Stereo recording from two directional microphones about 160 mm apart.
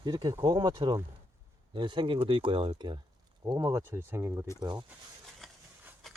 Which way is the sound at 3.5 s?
20° right (ahead or behind).